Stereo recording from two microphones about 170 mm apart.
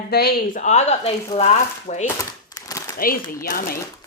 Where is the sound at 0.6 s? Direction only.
45° left (ahead or behind).